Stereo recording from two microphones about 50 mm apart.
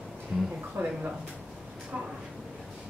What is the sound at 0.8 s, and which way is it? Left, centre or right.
Speech, right.